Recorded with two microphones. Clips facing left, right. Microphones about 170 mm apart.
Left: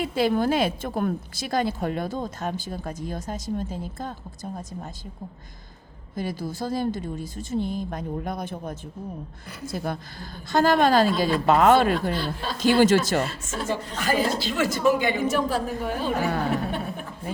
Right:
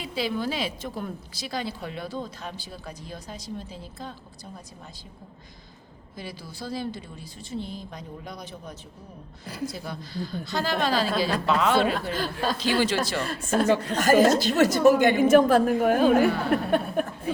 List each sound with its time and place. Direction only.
0.0 s a woman's voice: 50° left (ahead or behind)
6.1 s a woman's voice: 45° left (ahead or behind)
12.1 s a woman's voice: 45° right (ahead or behind)
12.5 s a woman's voice: 45° left (ahead or behind)
13.5 s speech: 65° right (ahead or behind)
13.9 s a woman's voice: 45° right (ahead or behind)